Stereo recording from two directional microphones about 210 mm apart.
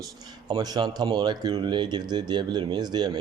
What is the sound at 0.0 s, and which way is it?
A man's voice, 20° right (ahead or behind).